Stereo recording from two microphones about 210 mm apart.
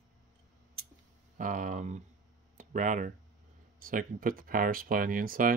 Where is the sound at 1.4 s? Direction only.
40° right (ahead or behind).